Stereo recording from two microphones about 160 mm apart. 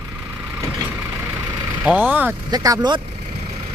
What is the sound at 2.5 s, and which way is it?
Speech, 25° right (ahead or behind).